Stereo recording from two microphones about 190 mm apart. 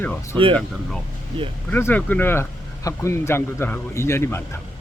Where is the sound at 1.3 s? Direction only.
25° right (ahead or behind).